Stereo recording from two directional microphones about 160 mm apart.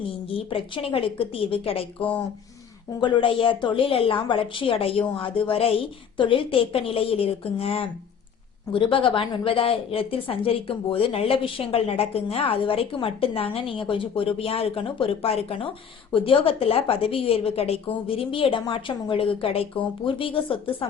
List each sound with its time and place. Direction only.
0.3 s a woman's voice: 35° left (ahead or behind)
2.0 s speech: 10° left (ahead or behind)
3.0 s a woman's voice: 30° left (ahead or behind)